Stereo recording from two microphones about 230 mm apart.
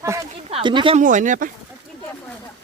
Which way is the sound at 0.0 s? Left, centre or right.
Centre.